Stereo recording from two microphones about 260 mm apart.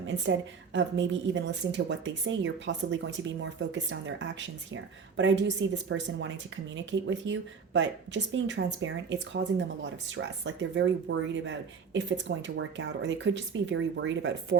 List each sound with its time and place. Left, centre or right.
0.0 s a woman's voice: right